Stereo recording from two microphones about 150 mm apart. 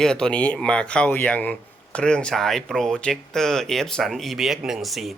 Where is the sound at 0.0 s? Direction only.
5° left (ahead or behind).